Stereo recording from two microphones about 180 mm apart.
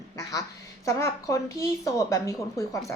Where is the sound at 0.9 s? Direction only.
15° left (ahead or behind).